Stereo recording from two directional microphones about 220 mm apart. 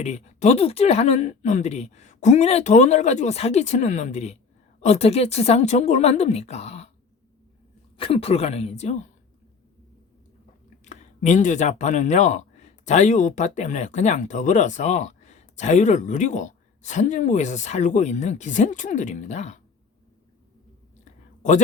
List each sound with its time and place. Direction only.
0.0 s speech: 30° left (ahead or behind)
7.9 s speech: 25° left (ahead or behind)
10.8 s speech: 35° left (ahead or behind)
21.0 s a sound: 35° left (ahead or behind)